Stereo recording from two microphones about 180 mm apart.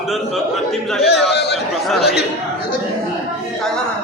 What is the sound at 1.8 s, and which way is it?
Speech, centre (ahead or behind).